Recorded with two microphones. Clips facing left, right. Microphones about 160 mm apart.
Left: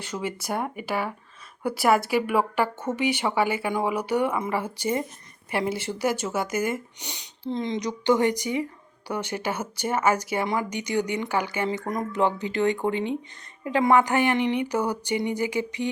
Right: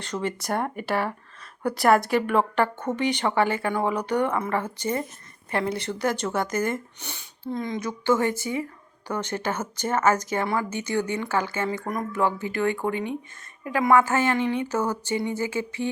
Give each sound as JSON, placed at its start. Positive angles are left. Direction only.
{"t": 0.0, "sound": "speech", "side_deg": 5}